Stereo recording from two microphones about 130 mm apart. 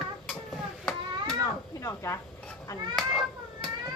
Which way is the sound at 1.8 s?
25° left (ahead or behind).